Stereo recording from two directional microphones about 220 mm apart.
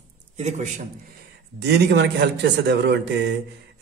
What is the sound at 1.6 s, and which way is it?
Speech, 50° right (ahead or behind).